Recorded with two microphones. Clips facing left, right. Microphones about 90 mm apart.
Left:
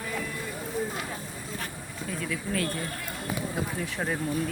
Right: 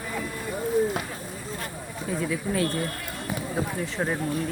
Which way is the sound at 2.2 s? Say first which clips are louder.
Right 4 dB; 25° right (ahead or behind).